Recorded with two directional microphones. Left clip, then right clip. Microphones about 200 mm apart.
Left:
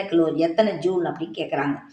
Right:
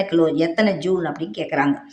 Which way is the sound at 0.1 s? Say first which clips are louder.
Left 2 dB; 40° right (ahead or behind).